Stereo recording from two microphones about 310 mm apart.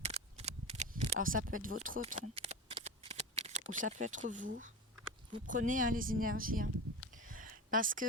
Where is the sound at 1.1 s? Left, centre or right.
Right.